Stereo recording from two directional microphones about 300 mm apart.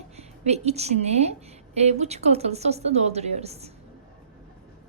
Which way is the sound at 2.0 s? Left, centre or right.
Right.